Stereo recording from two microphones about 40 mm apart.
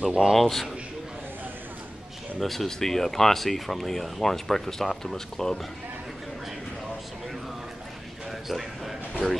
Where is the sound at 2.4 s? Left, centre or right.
Centre.